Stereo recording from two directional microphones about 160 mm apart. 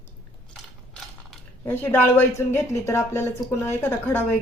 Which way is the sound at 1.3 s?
10° left (ahead or behind).